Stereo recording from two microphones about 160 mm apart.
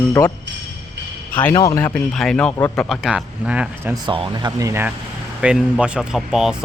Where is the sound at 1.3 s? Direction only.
10° left (ahead or behind).